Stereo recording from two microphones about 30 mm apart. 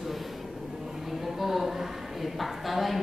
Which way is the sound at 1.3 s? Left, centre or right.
Centre.